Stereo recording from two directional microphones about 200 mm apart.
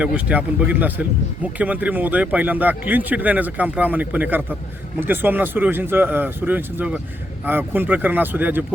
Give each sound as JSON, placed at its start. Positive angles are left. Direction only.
{"t": 0.0, "sound": "a man's voice", "side_deg": -5}